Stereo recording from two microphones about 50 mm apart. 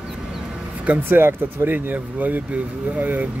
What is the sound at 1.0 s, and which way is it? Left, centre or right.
Speech, right.